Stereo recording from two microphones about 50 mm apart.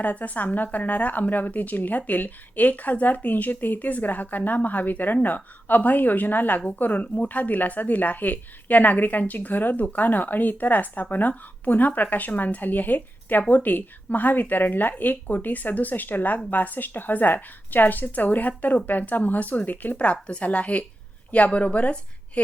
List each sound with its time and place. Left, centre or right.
0.0 s speech: left
20.0 s speech: left